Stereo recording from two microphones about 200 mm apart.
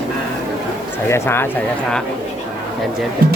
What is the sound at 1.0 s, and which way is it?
Speech, 15° left (ahead or behind).